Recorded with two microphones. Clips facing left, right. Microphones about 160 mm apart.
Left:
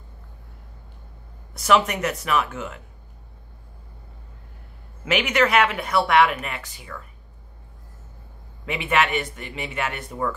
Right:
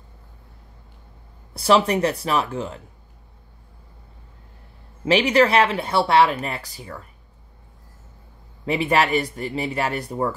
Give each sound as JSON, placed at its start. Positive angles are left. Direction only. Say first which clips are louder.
{"t": 1.5, "sound": "speech", "louder": "right 2 dB", "side_deg": -30}
{"t": 5.0, "sound": "speech", "louder": "right 4 dB", "side_deg": -30}
{"t": 8.6, "sound": "speech", "louder": "right 3 dB", "side_deg": -35}